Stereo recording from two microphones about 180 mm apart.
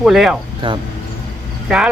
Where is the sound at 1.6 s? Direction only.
5° right (ahead or behind).